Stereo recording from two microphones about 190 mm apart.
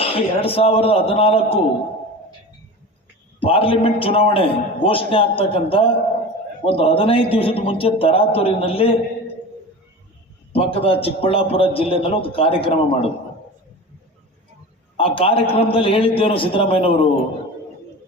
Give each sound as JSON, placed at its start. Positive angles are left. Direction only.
{"t": 0.0, "sound": "a man's voice", "side_deg": 30}
{"t": 3.4, "sound": "a man's voice", "side_deg": 30}
{"t": 10.5, "sound": "a man's voice", "side_deg": 30}
{"t": 14.9, "sound": "a man's voice", "side_deg": 30}